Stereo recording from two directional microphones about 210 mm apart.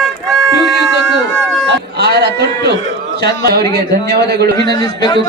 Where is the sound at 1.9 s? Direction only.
50° right (ahead or behind).